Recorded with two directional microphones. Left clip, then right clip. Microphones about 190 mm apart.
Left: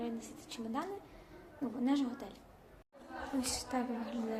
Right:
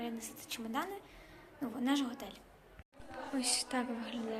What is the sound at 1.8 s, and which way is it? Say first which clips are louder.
Speech: even; 5° left (ahead or behind).